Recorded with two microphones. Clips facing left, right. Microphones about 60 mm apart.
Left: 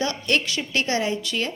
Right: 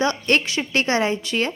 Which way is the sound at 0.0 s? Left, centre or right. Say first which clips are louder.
Right 4 dB; right.